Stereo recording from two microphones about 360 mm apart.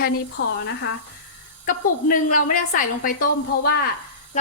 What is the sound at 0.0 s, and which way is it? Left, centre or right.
A woman's voice, left.